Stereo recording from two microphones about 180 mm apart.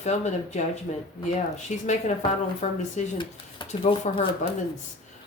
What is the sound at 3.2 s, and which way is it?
Speech, 25° left (ahead or behind).